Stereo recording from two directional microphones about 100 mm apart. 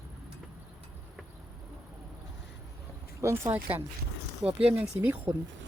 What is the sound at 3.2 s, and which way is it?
Speech, 30° right (ahead or behind).